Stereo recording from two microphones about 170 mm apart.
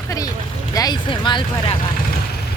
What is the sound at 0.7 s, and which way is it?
Speech, 25° left (ahead or behind).